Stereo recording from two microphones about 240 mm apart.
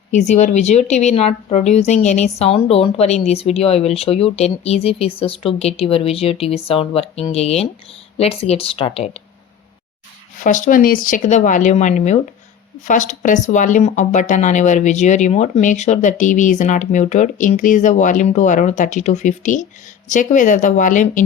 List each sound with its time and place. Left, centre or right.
0.1 s speech: left
10.4 s a woman's voice: left